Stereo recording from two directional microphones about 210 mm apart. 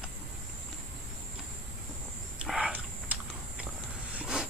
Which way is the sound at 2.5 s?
5° right (ahead or behind).